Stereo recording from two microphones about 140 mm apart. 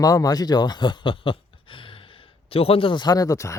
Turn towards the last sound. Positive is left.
turn(degrees=25)  # may be behind; listen again after turning